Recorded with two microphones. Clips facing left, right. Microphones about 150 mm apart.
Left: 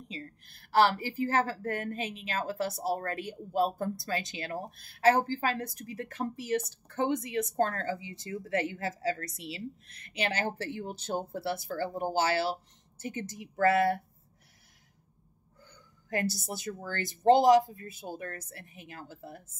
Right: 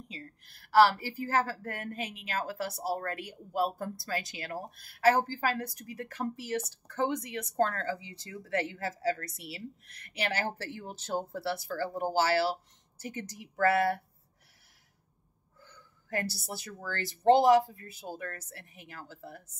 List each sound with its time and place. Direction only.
0.1 s speech: 25° left (ahead or behind)
16.1 s speech: 20° left (ahead or behind)